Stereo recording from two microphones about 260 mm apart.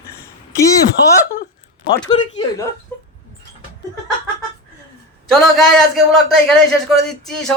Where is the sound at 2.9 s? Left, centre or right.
Centre.